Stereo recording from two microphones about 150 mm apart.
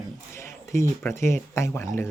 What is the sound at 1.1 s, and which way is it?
Speech, 20° left (ahead or behind).